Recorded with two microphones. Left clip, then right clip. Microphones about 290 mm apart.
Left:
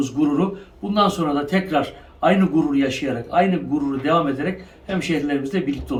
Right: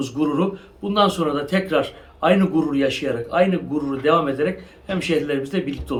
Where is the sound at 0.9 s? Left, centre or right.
Centre.